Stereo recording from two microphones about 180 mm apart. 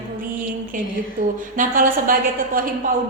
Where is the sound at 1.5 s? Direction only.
50° right (ahead or behind).